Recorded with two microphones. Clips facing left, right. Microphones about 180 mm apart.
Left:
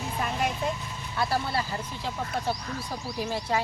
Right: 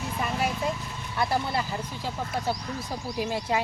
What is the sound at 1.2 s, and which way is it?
Speech, 15° right (ahead or behind).